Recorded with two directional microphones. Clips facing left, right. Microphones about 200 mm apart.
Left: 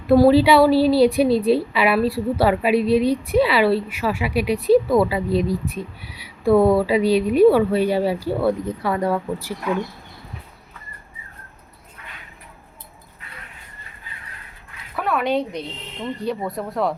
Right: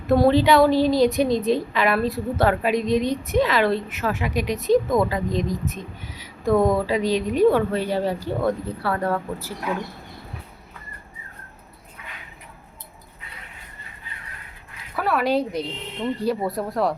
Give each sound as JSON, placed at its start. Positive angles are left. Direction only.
{"t": 0.1, "sound": "speech", "side_deg": 5}
{"t": 6.0, "sound": "speech", "side_deg": -40}
{"t": 6.5, "sound": "speech", "side_deg": 10}
{"t": 14.9, "sound": "speech", "side_deg": 0}